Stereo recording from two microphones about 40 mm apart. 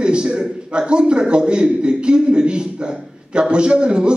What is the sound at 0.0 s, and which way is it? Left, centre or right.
A man's voice, right.